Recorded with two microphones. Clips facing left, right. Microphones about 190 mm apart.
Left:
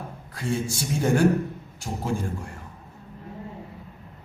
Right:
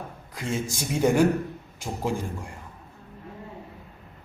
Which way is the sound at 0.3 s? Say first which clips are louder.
Left 2 dB; 20° right (ahead or behind).